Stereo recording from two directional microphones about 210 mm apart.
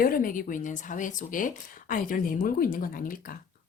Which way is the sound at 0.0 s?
40° left (ahead or behind).